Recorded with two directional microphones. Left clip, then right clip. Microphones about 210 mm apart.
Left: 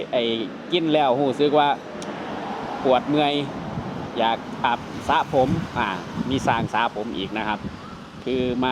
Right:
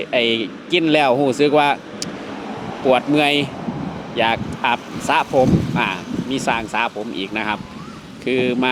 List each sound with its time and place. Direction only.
0.1 s speech: 15° right (ahead or behind)
2.8 s speech: 15° right (ahead or behind)
5.9 s speech: centre (ahead or behind)